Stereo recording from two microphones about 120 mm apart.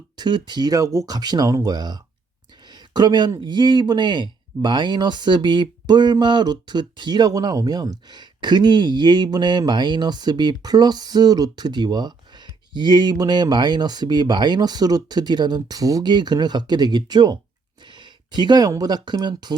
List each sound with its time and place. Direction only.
0.2 s speech: 40° right (ahead or behind)